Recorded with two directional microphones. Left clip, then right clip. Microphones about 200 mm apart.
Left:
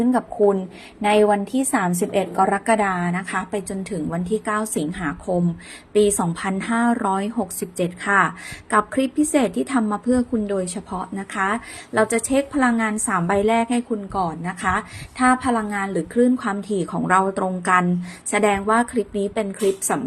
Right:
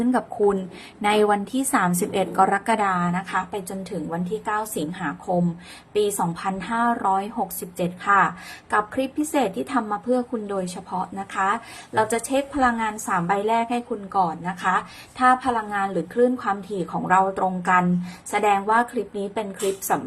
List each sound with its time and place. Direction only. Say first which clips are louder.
0.0 s a woman's voice: left 3 dB; 5° left (ahead or behind); by 19.5 s 20° left (ahead or behind)